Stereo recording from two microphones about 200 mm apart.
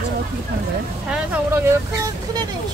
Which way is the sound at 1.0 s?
5° right (ahead or behind).